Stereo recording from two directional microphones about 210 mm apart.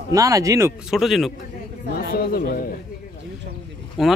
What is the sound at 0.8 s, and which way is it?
Speech, centre (ahead or behind).